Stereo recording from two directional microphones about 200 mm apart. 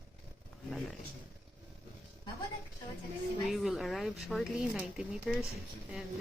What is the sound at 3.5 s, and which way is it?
Speech, centre (ahead or behind).